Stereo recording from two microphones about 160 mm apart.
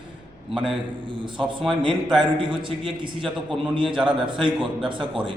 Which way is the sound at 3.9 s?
5° right (ahead or behind).